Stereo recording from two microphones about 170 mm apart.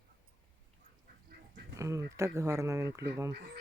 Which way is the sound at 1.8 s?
15° right (ahead or behind).